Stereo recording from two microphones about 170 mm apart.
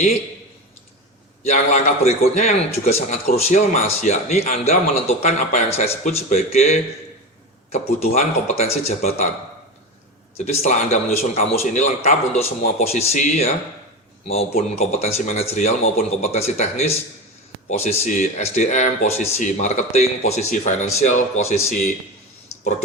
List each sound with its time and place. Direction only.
1.5 s a man's voice: 45° left (ahead or behind)
10.3 s a man's voice: 40° left (ahead or behind)
14.8 s a man's voice: 40° left (ahead or behind)